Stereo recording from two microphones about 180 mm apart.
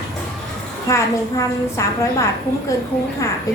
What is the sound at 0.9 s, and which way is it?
A woman's voice, 15° left (ahead or behind).